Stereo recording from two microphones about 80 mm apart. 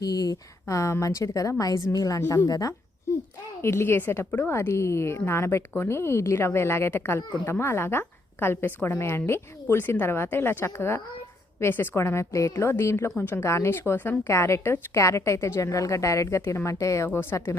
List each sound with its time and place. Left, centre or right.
0.0 s a woman's voice: left
3.6 s a woman's voice: left
14.3 s speech: left
17.1 s a woman's voice: left